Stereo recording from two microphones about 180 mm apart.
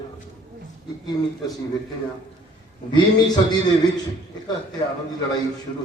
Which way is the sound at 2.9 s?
20° left (ahead or behind).